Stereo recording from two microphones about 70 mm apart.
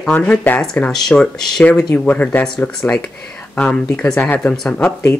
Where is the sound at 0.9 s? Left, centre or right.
Centre.